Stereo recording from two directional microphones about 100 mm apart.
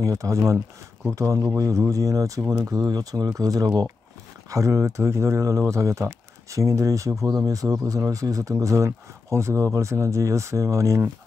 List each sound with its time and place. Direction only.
0.0 s speech: 35° right (ahead or behind)